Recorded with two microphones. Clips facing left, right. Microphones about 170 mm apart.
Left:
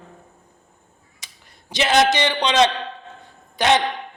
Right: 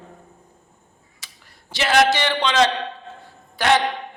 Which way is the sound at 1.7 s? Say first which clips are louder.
Even; 20° left (ahead or behind).